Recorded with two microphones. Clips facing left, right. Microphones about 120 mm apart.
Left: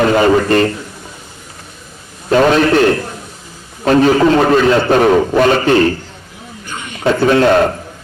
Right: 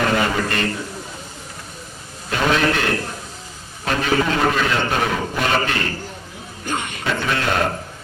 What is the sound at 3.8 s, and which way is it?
A man's voice, 35° left (ahead or behind).